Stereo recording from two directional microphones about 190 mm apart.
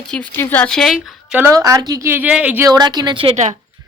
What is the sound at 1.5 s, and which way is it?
Speech, 20° right (ahead or behind).